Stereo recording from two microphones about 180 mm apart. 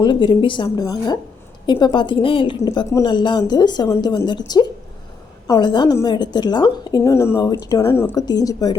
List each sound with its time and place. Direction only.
0.0 s a woman's voice: 25° left (ahead or behind)